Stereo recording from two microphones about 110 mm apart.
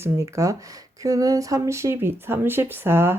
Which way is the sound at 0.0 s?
25° right (ahead or behind).